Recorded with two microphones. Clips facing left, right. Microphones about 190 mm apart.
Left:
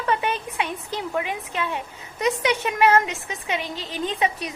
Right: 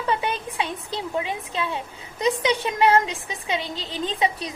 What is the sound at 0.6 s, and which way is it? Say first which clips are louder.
A woman's voice: even; 30° right (ahead or behind).